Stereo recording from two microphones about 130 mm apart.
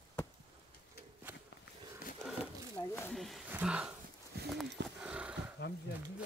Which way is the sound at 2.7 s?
15° left (ahead or behind).